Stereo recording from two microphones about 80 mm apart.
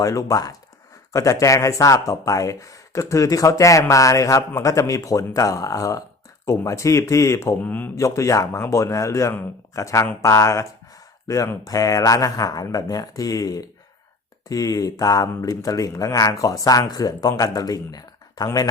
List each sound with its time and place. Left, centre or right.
0.0 s a man's voice: left
7.6 s speech: left
7.9 s a man's voice: left